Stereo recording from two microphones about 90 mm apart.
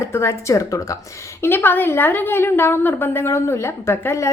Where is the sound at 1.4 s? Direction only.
25° left (ahead or behind).